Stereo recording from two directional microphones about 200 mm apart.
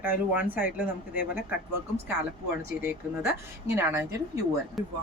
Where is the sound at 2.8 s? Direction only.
10° right (ahead or behind).